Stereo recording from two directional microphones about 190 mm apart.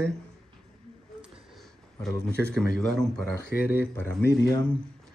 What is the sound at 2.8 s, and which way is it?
Speech, centre (ahead or behind).